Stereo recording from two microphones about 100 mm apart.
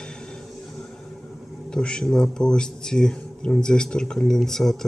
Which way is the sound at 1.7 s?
10° left (ahead or behind).